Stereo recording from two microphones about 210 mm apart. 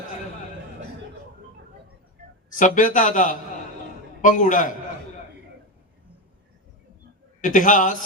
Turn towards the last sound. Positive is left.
turn(degrees=40)  # may be behind; listen again after turning